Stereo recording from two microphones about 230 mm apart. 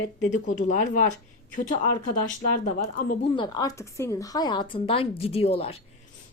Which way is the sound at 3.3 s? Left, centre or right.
Centre.